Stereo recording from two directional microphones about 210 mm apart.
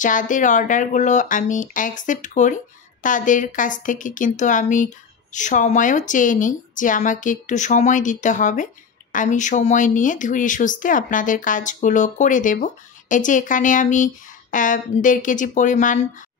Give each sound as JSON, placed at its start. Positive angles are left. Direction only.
{"t": 0.0, "sound": "speech", "side_deg": 40}